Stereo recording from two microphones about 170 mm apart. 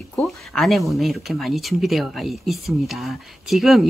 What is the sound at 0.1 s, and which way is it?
Speech, centre (ahead or behind).